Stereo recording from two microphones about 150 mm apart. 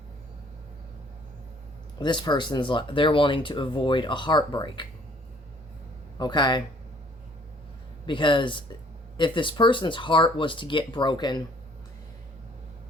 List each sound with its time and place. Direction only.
2.0 s speech: 30° left (ahead or behind)
6.1 s speech: 30° left (ahead or behind)
8.0 s speech: 30° left (ahead or behind)